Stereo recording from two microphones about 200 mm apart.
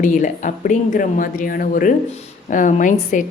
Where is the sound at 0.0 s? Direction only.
40° left (ahead or behind).